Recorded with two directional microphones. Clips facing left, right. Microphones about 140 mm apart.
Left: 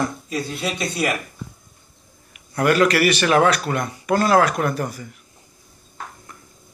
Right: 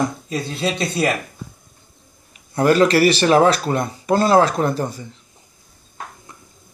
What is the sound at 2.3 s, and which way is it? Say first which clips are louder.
Speech: right 3 dB; 30° right (ahead or behind).